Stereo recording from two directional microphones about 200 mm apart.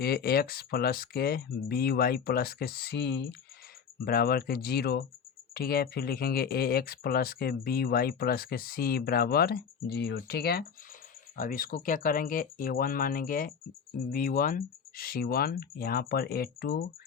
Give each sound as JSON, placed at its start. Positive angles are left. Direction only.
{"t": 0.0, "sound": "speech", "side_deg": 50}